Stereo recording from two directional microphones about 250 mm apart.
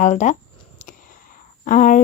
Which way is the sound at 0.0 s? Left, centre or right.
Left.